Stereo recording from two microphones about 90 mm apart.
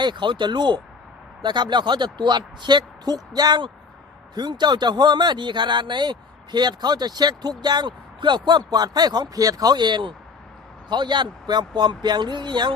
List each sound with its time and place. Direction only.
0.0 s speech: 60° right (ahead or behind)